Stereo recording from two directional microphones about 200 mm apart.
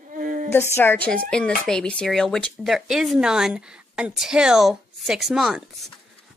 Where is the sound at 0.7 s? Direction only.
10° left (ahead or behind).